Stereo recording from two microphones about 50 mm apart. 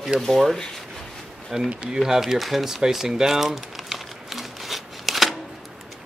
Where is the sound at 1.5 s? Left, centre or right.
Centre.